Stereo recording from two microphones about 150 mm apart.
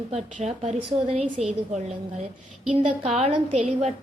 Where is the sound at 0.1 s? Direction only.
45° right (ahead or behind).